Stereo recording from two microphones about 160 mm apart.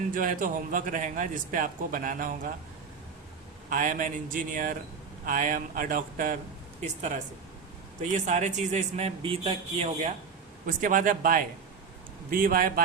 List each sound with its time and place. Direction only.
0.1 s speech: 55° right (ahead or behind)
3.7 s speech: 55° right (ahead or behind)
8.0 s speech: 45° right (ahead or behind)
10.7 s speech: 55° right (ahead or behind)